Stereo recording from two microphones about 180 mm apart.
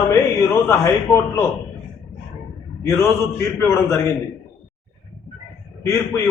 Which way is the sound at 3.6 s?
15° left (ahead or behind).